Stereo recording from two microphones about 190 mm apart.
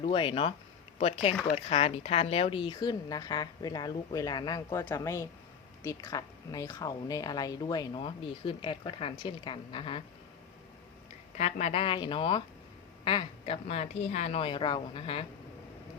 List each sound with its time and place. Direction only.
0.0 s a woman's voice: 25° left (ahead or behind)
11.3 s a woman's voice: 35° left (ahead or behind)